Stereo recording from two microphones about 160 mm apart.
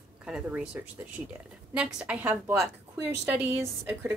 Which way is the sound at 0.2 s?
5° right (ahead or behind).